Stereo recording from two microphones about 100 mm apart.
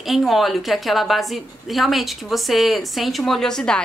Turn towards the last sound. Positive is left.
turn(degrees=5)  # may be behind; listen again after turning